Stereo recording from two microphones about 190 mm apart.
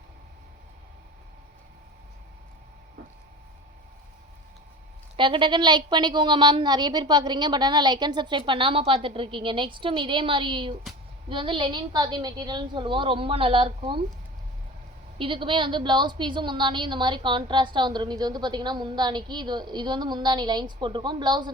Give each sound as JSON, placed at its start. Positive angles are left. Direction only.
{"t": 5.1, "sound": "a woman's voice", "side_deg": -25}
{"t": 15.2, "sound": "a woman's voice", "side_deg": -25}